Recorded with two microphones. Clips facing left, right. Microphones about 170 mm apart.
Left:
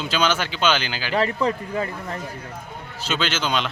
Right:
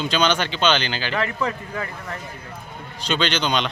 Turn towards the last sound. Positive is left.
turn(degrees=5)  # may be behind; listen again after turning